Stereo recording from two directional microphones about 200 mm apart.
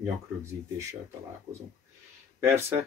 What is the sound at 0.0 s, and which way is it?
Speech, 15° right (ahead or behind).